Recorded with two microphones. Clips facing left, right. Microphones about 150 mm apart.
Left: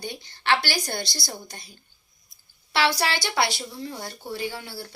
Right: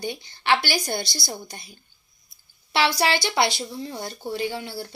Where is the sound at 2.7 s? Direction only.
15° right (ahead or behind).